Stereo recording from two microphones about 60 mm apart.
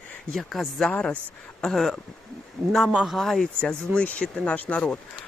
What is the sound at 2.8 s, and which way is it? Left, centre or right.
Speech, centre.